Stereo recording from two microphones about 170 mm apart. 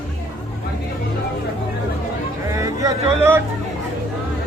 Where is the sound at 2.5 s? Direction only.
20° right (ahead or behind).